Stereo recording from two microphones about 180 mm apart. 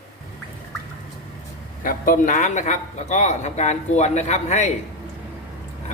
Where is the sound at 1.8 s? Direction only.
50° left (ahead or behind).